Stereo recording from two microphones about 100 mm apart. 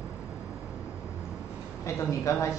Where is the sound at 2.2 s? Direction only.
30° left (ahead or behind).